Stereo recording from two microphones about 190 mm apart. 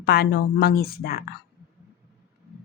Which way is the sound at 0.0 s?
60° left (ahead or behind).